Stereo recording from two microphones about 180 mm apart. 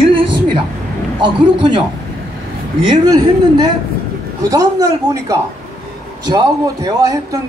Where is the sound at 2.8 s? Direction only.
20° right (ahead or behind).